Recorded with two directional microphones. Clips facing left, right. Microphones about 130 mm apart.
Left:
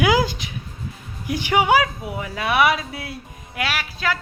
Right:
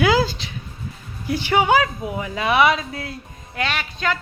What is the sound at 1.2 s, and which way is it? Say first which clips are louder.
A woman's voice: even; 15° left (ahead or behind).